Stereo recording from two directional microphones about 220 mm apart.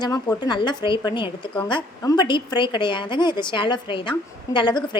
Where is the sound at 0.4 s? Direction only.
20° left (ahead or behind).